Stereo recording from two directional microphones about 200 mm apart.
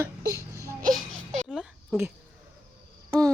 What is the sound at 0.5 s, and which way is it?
Baby cry, 15° right (ahead or behind).